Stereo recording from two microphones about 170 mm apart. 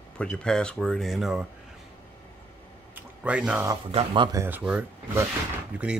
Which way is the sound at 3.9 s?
30° right (ahead or behind).